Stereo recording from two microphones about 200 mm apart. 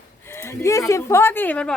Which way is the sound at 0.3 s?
10° left (ahead or behind).